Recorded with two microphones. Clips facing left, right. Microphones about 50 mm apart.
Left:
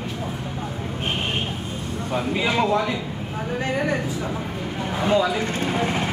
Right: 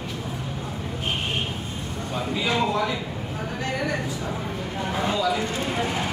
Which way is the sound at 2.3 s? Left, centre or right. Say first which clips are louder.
Left 3 dB; left.